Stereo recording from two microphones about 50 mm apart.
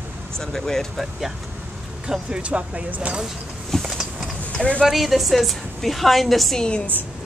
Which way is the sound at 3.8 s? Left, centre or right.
Centre.